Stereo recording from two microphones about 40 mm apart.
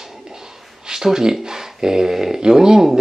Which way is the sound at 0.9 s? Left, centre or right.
Centre.